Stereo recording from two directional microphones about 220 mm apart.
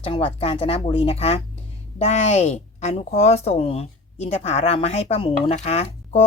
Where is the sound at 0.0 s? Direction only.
25° left (ahead or behind).